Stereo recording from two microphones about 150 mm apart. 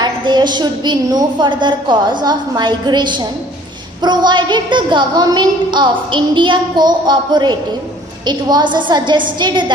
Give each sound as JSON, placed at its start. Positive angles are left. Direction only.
{"t": 0.0, "sound": "a woman's voice", "side_deg": -30}